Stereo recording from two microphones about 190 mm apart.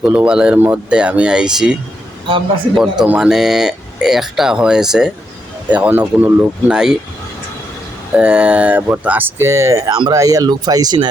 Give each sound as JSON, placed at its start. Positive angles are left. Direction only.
{"t": 0.0, "sound": "speech", "side_deg": -5}
{"t": 8.1, "sound": "speech", "side_deg": -5}